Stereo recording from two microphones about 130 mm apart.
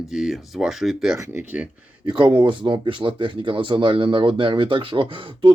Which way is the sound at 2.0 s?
40° right (ahead or behind).